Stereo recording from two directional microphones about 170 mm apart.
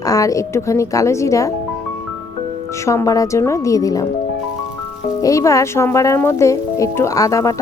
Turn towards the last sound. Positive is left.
turn(degrees=20)  # may be behind; listen again after turning